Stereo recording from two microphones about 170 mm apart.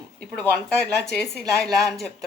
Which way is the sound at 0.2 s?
5° left (ahead or behind).